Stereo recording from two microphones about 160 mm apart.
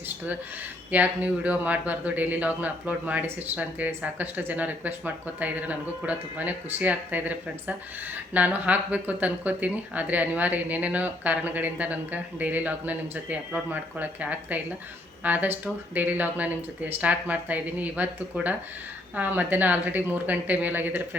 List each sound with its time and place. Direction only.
0.9 s speech: 10° right (ahead or behind)